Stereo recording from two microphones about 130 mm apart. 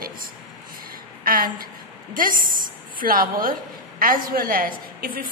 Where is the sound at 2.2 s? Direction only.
90° right.